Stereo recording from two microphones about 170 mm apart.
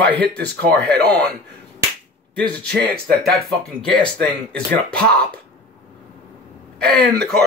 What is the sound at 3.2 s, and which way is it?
Speech, centre (ahead or behind).